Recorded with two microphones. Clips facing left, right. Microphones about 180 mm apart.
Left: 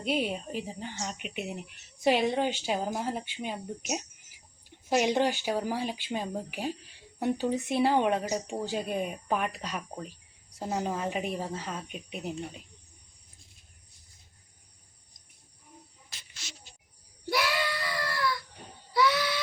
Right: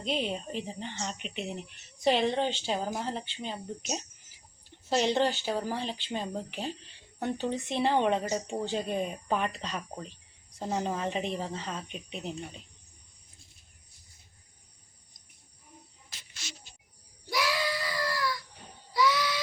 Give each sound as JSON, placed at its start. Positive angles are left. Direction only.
{"t": 0.0, "sound": "speech", "side_deg": 10}
{"t": 17.8, "sound": "crying", "side_deg": 60}
{"t": 18.9, "sound": "a sound", "side_deg": 60}